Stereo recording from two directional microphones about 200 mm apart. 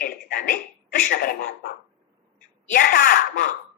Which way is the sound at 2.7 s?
40° left (ahead or behind).